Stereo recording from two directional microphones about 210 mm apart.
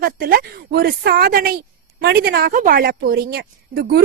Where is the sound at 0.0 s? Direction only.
45° right (ahead or behind).